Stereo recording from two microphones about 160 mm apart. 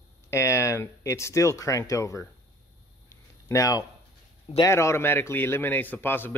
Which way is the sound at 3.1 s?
20° left (ahead or behind).